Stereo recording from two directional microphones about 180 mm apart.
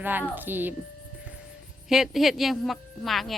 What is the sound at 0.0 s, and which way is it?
Speech, 10° right (ahead or behind).